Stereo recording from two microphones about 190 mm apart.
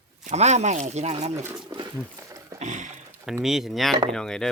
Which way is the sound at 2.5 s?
40° right (ahead or behind).